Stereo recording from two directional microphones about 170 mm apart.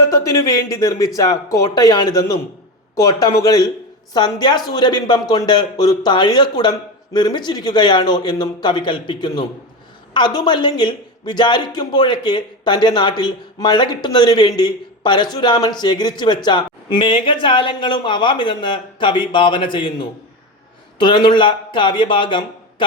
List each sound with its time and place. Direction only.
0.1 s speech: 20° left (ahead or behind)